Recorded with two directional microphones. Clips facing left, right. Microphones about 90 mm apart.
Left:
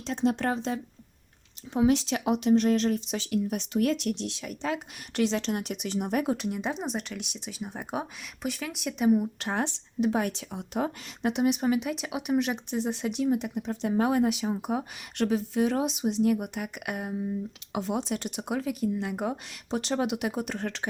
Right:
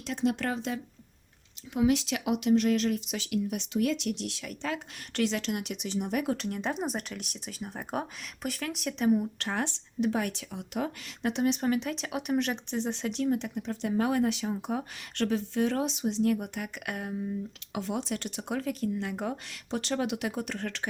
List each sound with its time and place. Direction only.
0.0 s speech: 30° left (ahead or behind); by 4.2 s 45° left (ahead or behind)
4.2 s speech: 20° left (ahead or behind)
5.7 s speech: 50° left (ahead or behind)
6.3 s speech: 5° left (ahead or behind); by 11.3 s 25° left (ahead or behind)
11.3 s speech: 10° left (ahead or behind)